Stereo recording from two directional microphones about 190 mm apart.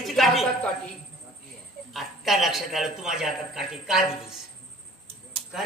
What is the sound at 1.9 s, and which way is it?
A man's voice, centre (ahead or behind).